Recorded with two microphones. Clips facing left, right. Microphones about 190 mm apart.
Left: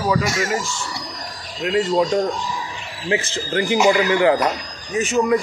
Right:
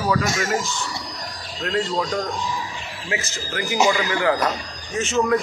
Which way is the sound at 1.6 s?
10° left (ahead or behind).